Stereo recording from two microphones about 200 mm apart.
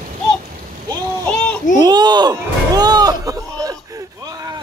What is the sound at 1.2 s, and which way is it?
Children playing, 5° left (ahead or behind).